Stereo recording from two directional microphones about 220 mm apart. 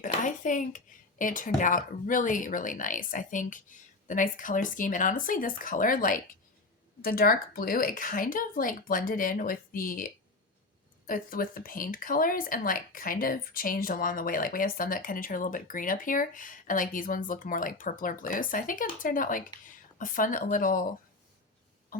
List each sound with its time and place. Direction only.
0.0 s dishes: 35° left (ahead or behind)
1.2 s speech: 35° left (ahead or behind)